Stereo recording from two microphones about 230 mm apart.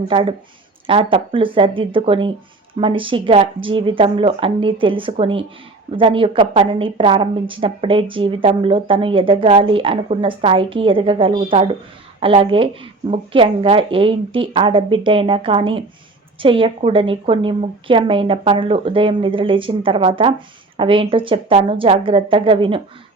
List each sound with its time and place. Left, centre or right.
0.1 s a woman's voice: right